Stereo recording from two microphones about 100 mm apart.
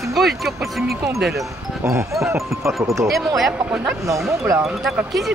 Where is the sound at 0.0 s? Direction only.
Centre (ahead or behind).